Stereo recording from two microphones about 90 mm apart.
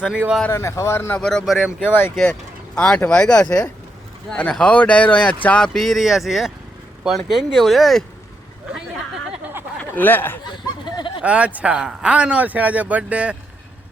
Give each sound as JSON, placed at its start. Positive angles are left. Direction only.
{"t": 0.0, "sound": "speech", "side_deg": -10}
{"t": 0.5, "sound": "speech", "side_deg": 30}
{"t": 1.2, "sound": "speech", "side_deg": 5}
{"t": 1.5, "sound": "speech", "side_deg": -5}
{"t": 2.7, "sound": "speech", "side_deg": 10}
{"t": 9.4, "sound": "a sound", "side_deg": -25}
{"t": 9.9, "sound": "speech", "side_deg": 20}
{"t": 10.9, "sound": "a sound", "side_deg": 65}
{"t": 11.2, "sound": "speech", "side_deg": -15}